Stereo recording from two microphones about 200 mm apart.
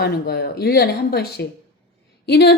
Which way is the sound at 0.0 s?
50° left (ahead or behind).